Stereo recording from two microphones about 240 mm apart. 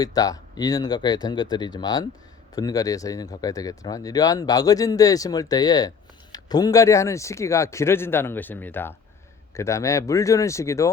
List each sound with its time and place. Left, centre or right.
0.0 s speech: centre